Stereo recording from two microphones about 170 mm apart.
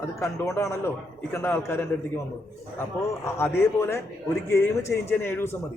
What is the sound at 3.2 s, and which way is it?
A man's voice, 15° left (ahead or behind).